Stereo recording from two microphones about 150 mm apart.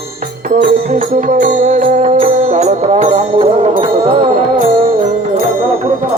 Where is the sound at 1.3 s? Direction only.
60° right (ahead or behind).